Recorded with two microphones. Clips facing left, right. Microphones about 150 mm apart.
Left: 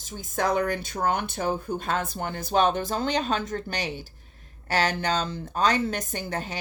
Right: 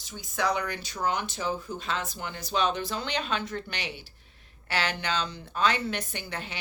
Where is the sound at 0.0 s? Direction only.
45° left (ahead or behind).